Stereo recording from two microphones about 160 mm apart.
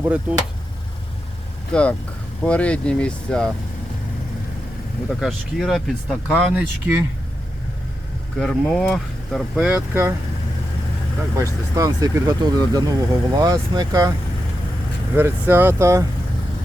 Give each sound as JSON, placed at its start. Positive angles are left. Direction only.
{"t": 0.0, "sound": "speech", "side_deg": -10}
{"t": 1.7, "sound": "speech", "side_deg": 5}
{"t": 5.2, "sound": "speech", "side_deg": 0}
{"t": 8.4, "sound": "speech", "side_deg": 5}
{"t": 9.6, "sound": "speech", "side_deg": -10}
{"t": 11.8, "sound": "speech", "side_deg": -25}
{"t": 15.1, "sound": "speech", "side_deg": -15}